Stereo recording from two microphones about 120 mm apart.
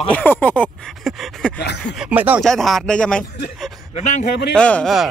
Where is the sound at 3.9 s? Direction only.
80° left.